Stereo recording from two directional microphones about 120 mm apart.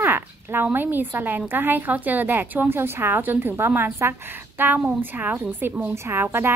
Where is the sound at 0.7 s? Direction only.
15° right (ahead or behind).